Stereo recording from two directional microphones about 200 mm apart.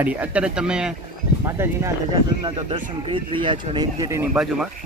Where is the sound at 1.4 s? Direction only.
15° right (ahead or behind).